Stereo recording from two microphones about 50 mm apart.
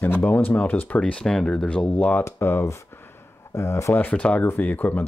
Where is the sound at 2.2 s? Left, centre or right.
Left.